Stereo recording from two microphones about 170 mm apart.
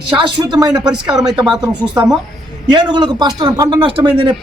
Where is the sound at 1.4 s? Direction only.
25° right (ahead or behind).